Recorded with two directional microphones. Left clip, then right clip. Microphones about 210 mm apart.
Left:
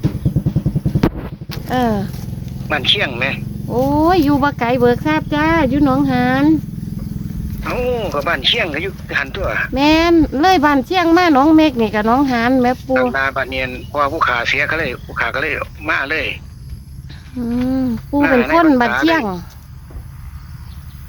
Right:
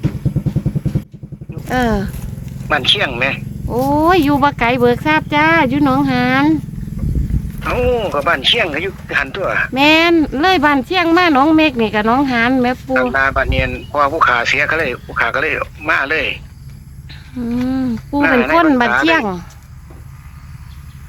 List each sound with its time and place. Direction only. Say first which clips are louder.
1.6 s speech: right 1 dB; 20° right (ahead or behind)
7.6 s speech: right 3 dB; 15° right (ahead or behind)
17.4 s speech: even; 10° right (ahead or behind)